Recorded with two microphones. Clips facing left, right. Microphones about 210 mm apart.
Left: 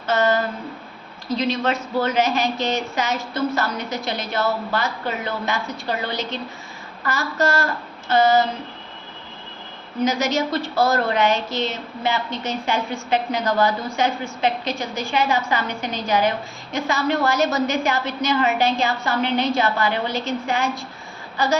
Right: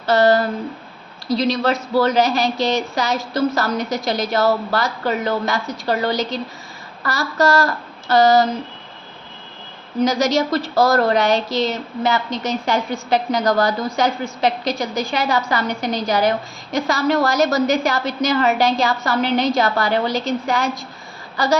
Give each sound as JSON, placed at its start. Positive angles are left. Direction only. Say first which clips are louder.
{"t": 0.0, "sound": "a woman's voice", "louder": "right 5 dB", "side_deg": -35}
{"t": 10.0, "sound": "a woman's voice", "louder": "right 4 dB", "side_deg": -35}